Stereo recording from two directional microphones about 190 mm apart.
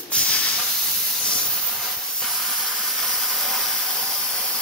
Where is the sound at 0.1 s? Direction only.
5° left (ahead or behind).